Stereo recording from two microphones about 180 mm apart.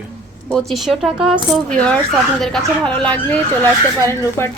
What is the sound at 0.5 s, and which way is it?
Speech, centre (ahead or behind).